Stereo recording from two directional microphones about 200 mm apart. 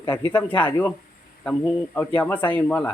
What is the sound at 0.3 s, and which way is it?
Speech, 10° left (ahead or behind).